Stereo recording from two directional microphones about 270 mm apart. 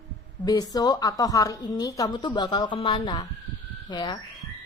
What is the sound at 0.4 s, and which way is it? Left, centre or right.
Speech, centre.